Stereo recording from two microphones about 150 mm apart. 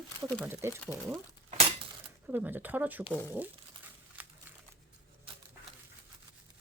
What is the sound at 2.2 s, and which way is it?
Speech, 10° right (ahead or behind).